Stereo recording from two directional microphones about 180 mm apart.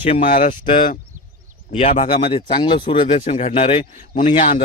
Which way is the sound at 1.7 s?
40° left (ahead or behind).